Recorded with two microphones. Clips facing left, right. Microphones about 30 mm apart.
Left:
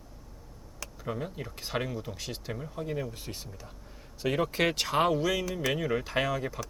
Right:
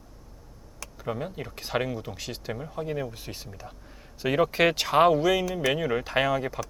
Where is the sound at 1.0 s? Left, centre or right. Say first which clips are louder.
Right 3 dB; centre.